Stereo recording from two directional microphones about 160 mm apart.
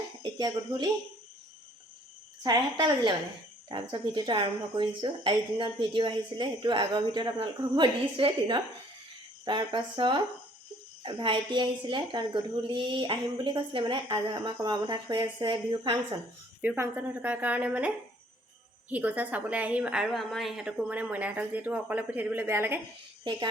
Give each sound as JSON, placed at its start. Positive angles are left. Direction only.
{"t": 0.2, "sound": "speech", "side_deg": -30}
{"t": 2.4, "sound": "a woman's voice", "side_deg": -25}
{"t": 16.6, "sound": "a woman's voice", "side_deg": -10}
{"t": 23.3, "sound": "speech", "side_deg": -30}